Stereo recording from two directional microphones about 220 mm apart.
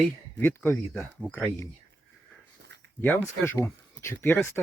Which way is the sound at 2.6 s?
50° right (ahead or behind).